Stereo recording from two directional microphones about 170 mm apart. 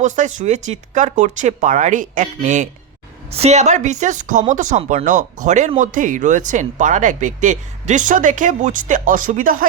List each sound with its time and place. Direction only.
0.0 s speech: 45° right (ahead or behind)